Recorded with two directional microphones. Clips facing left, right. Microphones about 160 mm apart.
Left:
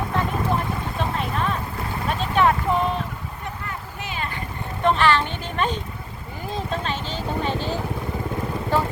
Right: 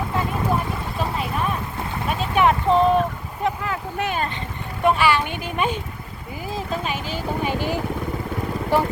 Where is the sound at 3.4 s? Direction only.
90° right; by 4.2 s 60° right (ahead or behind).